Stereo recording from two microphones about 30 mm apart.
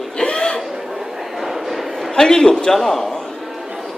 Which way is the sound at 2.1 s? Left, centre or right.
Left.